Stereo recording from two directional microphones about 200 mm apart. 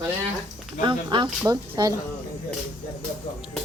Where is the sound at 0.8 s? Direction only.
25° right (ahead or behind).